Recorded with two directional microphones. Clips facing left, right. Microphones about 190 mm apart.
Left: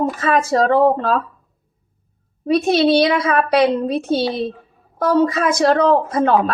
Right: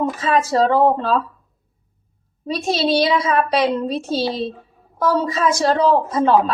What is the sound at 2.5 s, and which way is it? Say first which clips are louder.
A woman's voice: left 5 dB; 60° left (ahead or behind).